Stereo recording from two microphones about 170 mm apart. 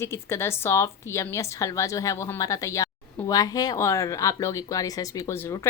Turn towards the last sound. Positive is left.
turn(degrees=15)  # may be behind; listen again after turning